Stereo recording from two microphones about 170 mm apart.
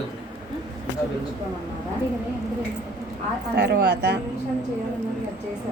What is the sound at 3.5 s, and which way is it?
Speech, 70° right (ahead or behind).